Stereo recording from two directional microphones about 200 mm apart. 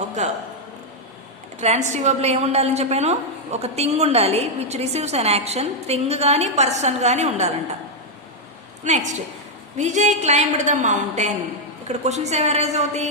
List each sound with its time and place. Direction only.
0.2 s a woman's voice: 35° right (ahead or behind)
1.6 s a woman's voice: 35° right (ahead or behind)
8.8 s a woman's voice: 35° right (ahead or behind)